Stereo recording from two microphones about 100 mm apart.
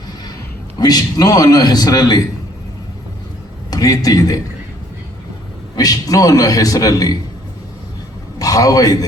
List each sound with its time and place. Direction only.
0.8 s a man's voice: 40° left (ahead or behind)
3.7 s speech: 40° left (ahead or behind)
5.7 s a man's voice: 40° left (ahead or behind)
8.4 s a man's voice: 35° left (ahead or behind)